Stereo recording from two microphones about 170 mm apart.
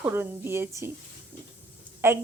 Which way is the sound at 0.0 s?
15° right (ahead or behind).